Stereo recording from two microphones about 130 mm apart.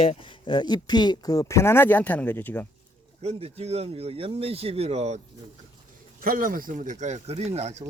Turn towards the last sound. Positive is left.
turn(degrees=-60)  # may be behind; listen again after turning